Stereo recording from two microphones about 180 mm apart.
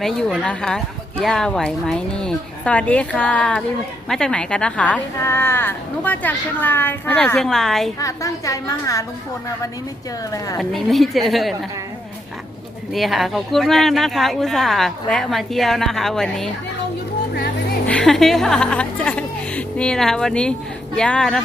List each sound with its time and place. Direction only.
0.0 s a woman's voice: centre (ahead or behind)
7.9 s a woman's voice: 20° left (ahead or behind)
10.3 s a woman's voice: 20° left (ahead or behind)
10.6 s speech: centre (ahead or behind)
12.9 s speech: centre (ahead or behind)
17.8 s speech: 5° left (ahead or behind)